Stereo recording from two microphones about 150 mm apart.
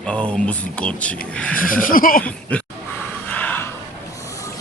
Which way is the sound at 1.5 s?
70° left (ahead or behind).